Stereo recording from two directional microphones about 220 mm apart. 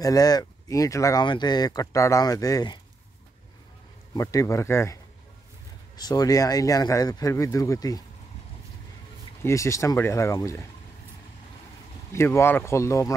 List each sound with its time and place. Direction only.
0.0 s speech: 15° left (ahead or behind)
4.1 s speech: 15° left (ahead or behind)
5.9 s speech: 15° left (ahead or behind)
9.4 s speech: 15° left (ahead or behind)
12.1 s speech: 10° left (ahead or behind)